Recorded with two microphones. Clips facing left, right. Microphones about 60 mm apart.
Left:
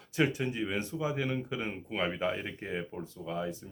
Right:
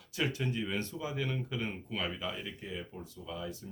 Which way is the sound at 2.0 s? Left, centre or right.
Left.